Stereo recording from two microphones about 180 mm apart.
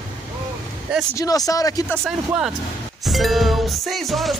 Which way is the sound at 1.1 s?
20° left (ahead or behind).